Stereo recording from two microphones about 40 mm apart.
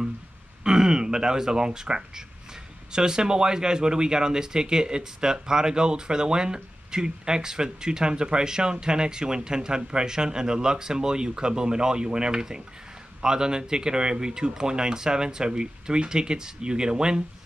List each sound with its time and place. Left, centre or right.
0.7 s speech: centre